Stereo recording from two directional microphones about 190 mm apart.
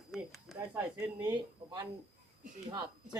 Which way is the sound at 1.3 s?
20° right (ahead or behind).